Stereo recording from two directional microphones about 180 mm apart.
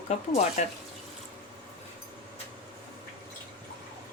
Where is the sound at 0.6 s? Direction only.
45° left (ahead or behind).